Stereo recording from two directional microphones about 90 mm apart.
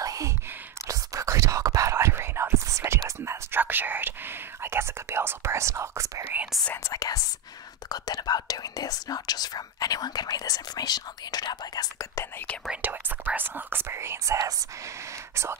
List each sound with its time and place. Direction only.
0.0 s whispering: 40° right (ahead or behind)
3.3 s whispering: 20° right (ahead or behind)
6.8 s speech: 40° left (ahead or behind)
7.9 s whispering: 50° left (ahead or behind)
12.8 s whispering: 20° right (ahead or behind)